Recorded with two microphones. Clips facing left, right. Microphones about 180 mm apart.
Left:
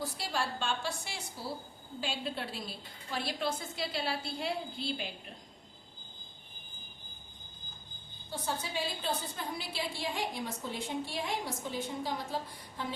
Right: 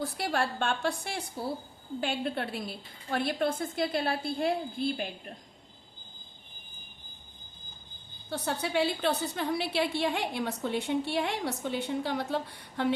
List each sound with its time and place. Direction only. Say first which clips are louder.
0.0 s a woman's voice: right 5 dB; 60° right (ahead or behind)
8.3 s a woman's voice: right 6 dB; 70° right (ahead or behind)